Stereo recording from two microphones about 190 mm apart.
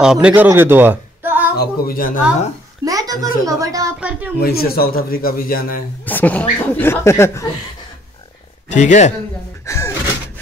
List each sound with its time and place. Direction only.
0.0 s a man's voice: 5° right (ahead or behind)
1.6 s a man's voice: 50° left (ahead or behind)
2.8 s a child's voice: 20° right (ahead or behind)
4.4 s a man's voice: 55° left (ahead or behind)
6.0 s speech: 10° left (ahead or behind)
8.6 s a man's voice: 40° left (ahead or behind)
9.7 s door: 15° left (ahead or behind)